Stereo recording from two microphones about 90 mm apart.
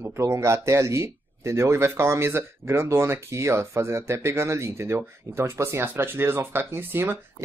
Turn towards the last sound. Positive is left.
turn(degrees=-25)  # may be behind; listen again after turning